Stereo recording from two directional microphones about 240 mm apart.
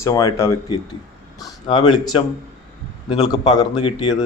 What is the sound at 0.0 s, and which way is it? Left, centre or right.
Speech, centre.